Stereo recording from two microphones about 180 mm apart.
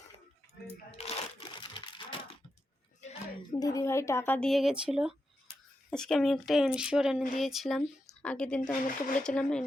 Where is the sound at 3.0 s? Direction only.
40° left (ahead or behind).